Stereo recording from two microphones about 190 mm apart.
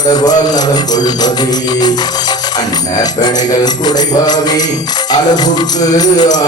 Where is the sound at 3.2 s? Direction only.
20° left (ahead or behind).